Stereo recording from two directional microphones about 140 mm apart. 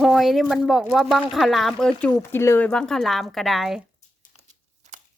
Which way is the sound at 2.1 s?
15° left (ahead or behind).